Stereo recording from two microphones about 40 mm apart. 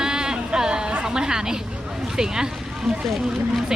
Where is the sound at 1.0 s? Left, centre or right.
Centre.